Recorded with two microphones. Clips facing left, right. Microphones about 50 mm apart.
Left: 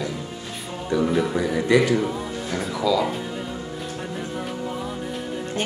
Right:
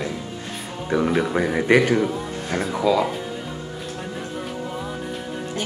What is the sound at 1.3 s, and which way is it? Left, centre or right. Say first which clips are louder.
Speech: right 2 dB; right.